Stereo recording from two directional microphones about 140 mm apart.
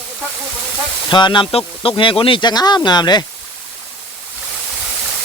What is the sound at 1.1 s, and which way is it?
Speech, 35° left (ahead or behind).